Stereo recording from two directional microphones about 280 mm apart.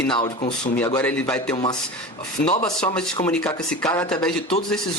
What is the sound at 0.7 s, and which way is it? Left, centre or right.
Speech, centre.